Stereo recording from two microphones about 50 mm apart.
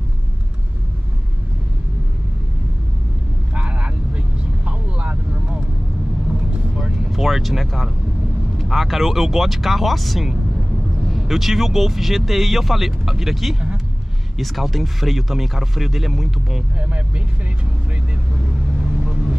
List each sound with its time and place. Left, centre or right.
3.5 s vehicle: right
6.8 s vehicle: centre
8.5 s speech: centre